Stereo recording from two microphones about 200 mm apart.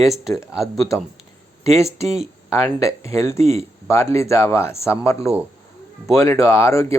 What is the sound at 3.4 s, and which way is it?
Speech, 30° right (ahead or behind).